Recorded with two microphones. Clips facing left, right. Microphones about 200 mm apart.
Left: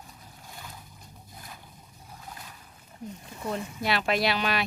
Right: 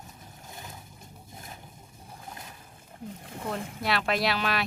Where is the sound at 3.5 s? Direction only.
55° right (ahead or behind).